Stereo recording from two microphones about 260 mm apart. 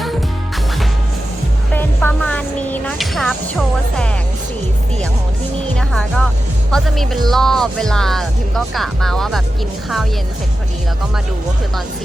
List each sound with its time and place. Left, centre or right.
1.7 s music: centre
5.7 s music: centre
6.7 s speech: centre